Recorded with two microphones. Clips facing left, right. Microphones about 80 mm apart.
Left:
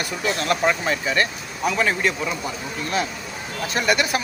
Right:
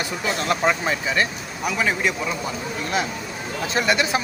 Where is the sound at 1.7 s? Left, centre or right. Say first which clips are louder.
Even; centre.